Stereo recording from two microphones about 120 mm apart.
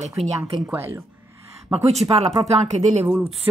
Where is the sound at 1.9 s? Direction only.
65° right (ahead or behind).